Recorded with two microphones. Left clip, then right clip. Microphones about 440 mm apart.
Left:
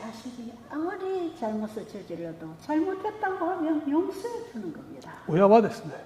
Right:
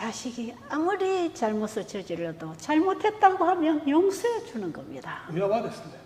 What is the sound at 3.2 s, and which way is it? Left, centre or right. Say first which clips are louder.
Speech: right 9 dB; right.